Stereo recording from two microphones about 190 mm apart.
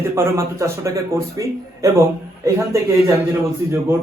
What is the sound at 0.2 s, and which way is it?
A man's voice, 15° right (ahead or behind).